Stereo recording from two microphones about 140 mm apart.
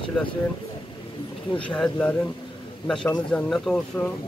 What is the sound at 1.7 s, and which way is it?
Speech, 10° left (ahead or behind).